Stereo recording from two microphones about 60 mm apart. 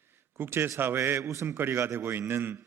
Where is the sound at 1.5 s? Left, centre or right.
Right.